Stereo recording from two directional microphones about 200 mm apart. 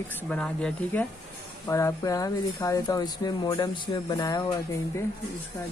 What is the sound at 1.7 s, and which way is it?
Speech, 15° left (ahead or behind).